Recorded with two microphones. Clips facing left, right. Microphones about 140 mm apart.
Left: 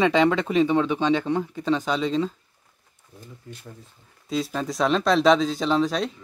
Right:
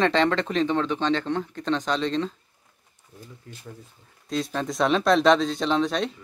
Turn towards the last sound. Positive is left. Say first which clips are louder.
# left 1 dB
turn(degrees=0)  # may be behind; listen again after turning